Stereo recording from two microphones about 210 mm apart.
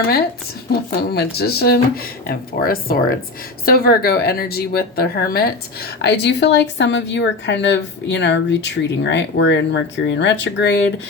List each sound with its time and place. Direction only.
0.7 s speech: 50° left (ahead or behind)